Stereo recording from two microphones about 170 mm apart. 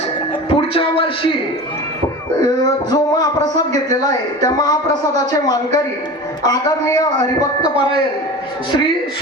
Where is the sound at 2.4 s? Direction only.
25° left (ahead or behind).